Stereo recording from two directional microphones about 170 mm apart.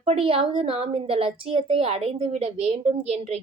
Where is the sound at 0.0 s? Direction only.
35° right (ahead or behind).